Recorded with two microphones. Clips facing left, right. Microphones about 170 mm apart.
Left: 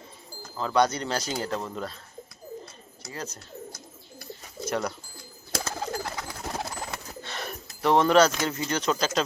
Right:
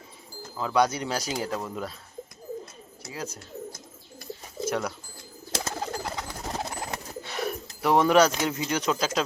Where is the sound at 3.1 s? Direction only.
5° right (ahead or behind).